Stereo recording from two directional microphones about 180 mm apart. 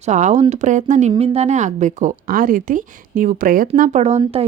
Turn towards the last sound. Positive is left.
turn(degrees=-35)  # may be behind; listen again after turning